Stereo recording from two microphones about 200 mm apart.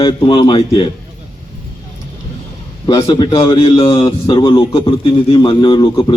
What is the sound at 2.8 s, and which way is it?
Speech, 20° left (ahead or behind).